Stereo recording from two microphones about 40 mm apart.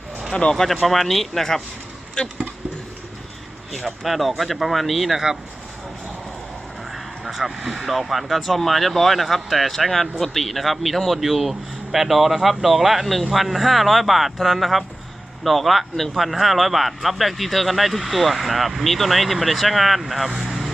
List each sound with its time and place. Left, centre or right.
0.3 s speech: centre
0.5 s speech: centre
3.8 s speech: centre
5.1 s speech: centre
6.9 s speech: centre